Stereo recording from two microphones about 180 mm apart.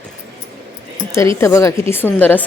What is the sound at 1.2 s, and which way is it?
Speech, 15° left (ahead or behind).